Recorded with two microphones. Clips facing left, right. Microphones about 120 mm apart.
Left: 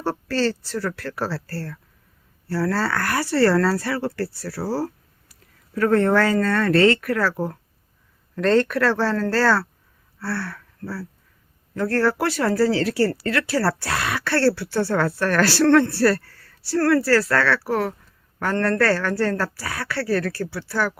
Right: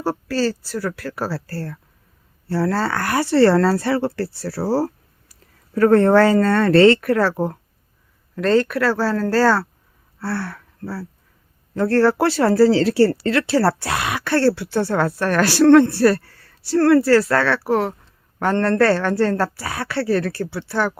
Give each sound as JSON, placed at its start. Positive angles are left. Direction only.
{"t": 0.0, "sound": "speech", "side_deg": -10}
{"t": 8.4, "sound": "speech", "side_deg": -5}